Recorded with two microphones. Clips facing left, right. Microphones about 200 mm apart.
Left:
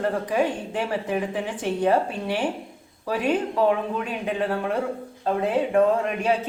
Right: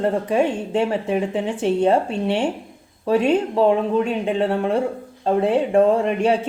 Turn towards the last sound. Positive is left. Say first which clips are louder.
# right 5 dB
turn(degrees=-30)  # may be behind; listen again after turning